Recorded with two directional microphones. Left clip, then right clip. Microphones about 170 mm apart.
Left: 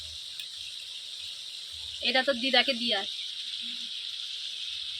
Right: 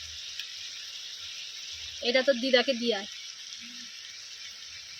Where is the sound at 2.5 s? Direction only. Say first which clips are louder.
Even; 60° right (ahead or behind).